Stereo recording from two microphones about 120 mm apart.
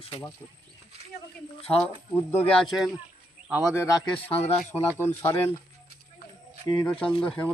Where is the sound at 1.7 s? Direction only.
15° left (ahead or behind).